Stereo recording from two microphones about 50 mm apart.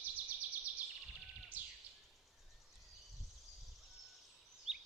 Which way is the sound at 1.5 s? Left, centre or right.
Right.